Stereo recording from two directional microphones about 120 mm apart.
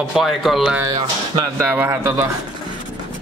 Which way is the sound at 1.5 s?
15° right (ahead or behind).